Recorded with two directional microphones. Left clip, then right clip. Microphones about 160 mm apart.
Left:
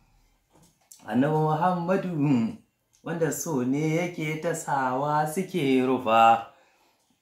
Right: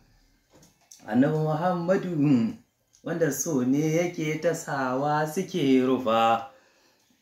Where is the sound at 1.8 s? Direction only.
20° left (ahead or behind).